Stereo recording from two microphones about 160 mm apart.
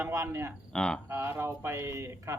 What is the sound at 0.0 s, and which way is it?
Speech, 15° right (ahead or behind).